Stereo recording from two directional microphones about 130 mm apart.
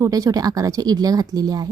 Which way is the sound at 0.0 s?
25° right (ahead or behind).